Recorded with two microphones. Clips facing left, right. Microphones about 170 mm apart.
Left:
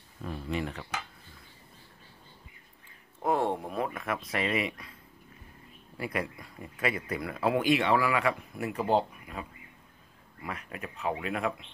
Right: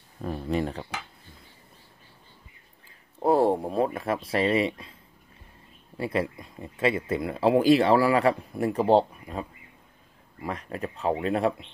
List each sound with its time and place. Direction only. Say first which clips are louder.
0.2 s speech: right 6 dB; 40° right (ahead or behind)
3.2 s a sound: right 7 dB; 35° right (ahead or behind)
5.9 s speech: right 6 dB; 25° right (ahead or behind)